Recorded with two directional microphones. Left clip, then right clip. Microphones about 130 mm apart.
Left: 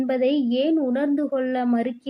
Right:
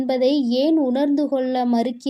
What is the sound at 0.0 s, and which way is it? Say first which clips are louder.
A woman's voice: right 2 dB; 25° right (ahead or behind).